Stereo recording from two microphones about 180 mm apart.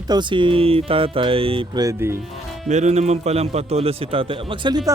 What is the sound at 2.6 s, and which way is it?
A man's voice, 40° right (ahead or behind).